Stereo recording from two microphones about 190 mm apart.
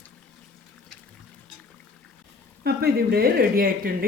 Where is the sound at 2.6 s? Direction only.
55° right (ahead or behind).